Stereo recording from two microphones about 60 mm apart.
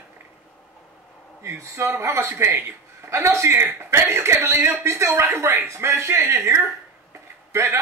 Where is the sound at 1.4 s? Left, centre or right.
Right.